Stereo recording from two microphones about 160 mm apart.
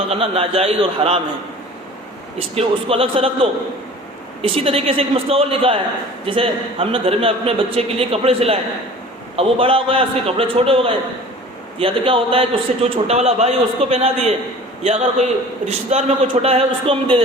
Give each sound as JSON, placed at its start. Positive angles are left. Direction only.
{"t": 0.1, "sound": "a man's voice", "side_deg": -40}
{"t": 2.6, "sound": "a man's voice", "side_deg": -35}